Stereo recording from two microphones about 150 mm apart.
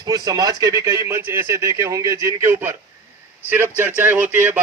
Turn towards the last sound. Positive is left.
turn(degrees=-10)  # may be behind; listen again after turning